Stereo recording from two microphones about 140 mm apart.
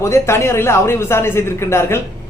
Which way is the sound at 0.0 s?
20° left (ahead or behind).